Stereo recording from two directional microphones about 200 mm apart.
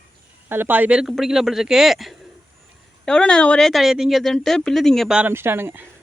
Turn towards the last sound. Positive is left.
turn(degrees=-10)  # may be behind; listen again after turning